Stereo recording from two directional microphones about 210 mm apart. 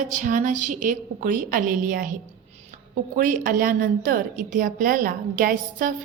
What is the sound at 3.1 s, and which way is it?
A woman's voice, 40° right (ahead or behind).